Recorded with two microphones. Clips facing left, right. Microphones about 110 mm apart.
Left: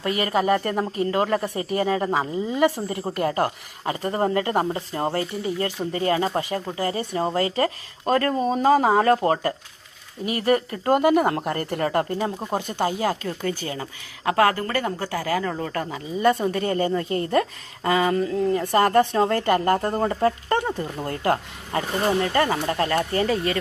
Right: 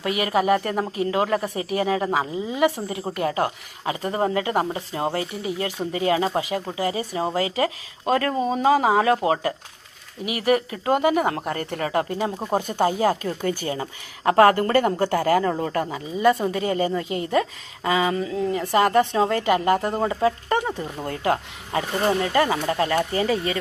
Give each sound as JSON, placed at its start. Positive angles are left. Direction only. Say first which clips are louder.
{"t": 0.0, "sound": "a woman's voice", "louder": "right 1 dB", "side_deg": -10}
{"t": 22.3, "sound": "speech", "louder": "right 1 dB", "side_deg": -15}